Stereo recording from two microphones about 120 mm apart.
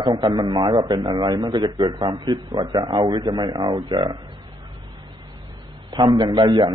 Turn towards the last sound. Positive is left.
turn(degrees=-35)  # may be behind; listen again after turning